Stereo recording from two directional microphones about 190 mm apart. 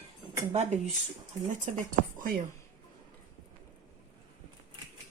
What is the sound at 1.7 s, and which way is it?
Speech, 35° right (ahead or behind).